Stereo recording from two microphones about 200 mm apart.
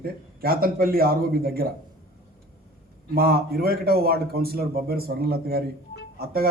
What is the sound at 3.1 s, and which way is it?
Speech, 50° right (ahead or behind).